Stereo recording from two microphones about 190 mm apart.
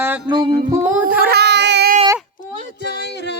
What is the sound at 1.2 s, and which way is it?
Child singing, 60° right (ahead or behind).